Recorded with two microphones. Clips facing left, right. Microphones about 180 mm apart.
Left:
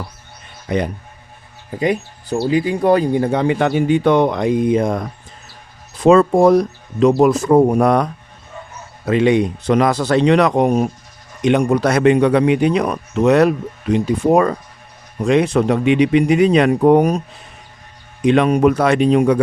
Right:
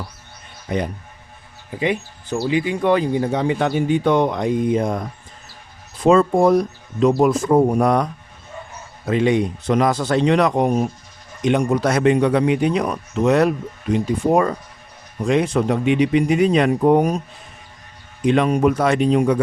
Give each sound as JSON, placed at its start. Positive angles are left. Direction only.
{"t": 0.7, "sound": "speech", "side_deg": 80}
{"t": 1.8, "sound": "speech", "side_deg": 40}
{"t": 3.1, "sound": "speech", "side_deg": 60}
{"t": 9.0, "sound": "speech", "side_deg": 75}
{"t": 18.3, "sound": "speech", "side_deg": 75}